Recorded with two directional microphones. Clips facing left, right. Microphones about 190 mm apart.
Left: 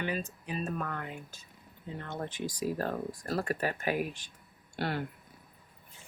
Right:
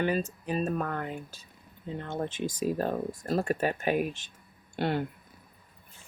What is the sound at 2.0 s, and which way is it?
Speech, 25° right (ahead or behind).